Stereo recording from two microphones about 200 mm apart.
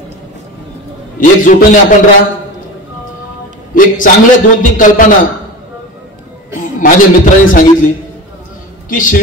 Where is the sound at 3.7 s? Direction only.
40° left (ahead or behind).